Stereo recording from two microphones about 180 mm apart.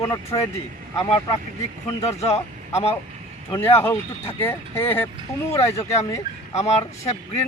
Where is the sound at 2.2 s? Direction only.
35° left (ahead or behind).